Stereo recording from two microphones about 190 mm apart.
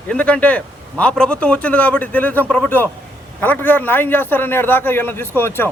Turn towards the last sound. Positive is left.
turn(degrees=10)  # may be behind; listen again after turning